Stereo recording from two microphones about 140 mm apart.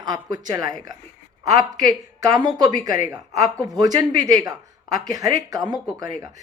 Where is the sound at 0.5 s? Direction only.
25° right (ahead or behind).